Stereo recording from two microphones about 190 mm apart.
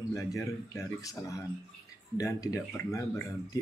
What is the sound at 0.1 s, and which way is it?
Speech, 15° left (ahead or behind).